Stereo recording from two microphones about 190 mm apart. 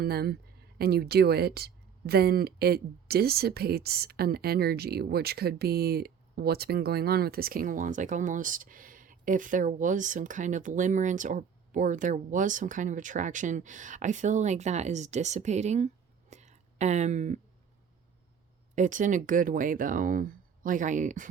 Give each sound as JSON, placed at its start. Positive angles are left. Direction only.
{"t": 0.0, "sound": "speech", "side_deg": -55}
{"t": 16.3, "sound": "a sound", "side_deg": -35}
{"t": 18.7, "sound": "speech", "side_deg": -40}